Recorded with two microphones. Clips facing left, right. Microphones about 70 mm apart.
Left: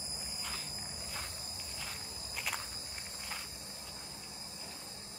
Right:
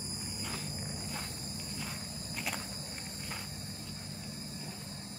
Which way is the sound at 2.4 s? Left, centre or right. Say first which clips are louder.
Right 1 dB; centre.